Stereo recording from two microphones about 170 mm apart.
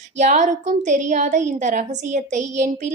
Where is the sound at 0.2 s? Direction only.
45° right (ahead or behind).